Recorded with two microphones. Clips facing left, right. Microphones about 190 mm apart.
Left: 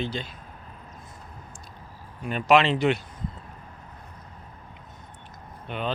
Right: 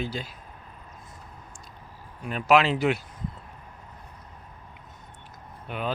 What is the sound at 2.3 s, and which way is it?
Speech, centre (ahead or behind).